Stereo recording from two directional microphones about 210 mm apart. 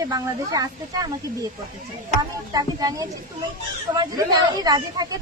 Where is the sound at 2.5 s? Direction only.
15° right (ahead or behind).